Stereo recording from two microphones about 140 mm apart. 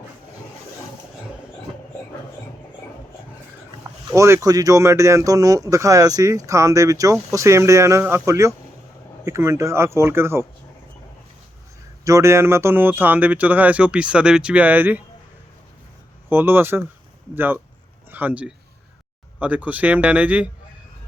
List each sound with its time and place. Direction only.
4.1 s speech: 20° right (ahead or behind)
12.0 s speech: 20° right (ahead or behind)
16.3 s speech: 15° right (ahead or behind)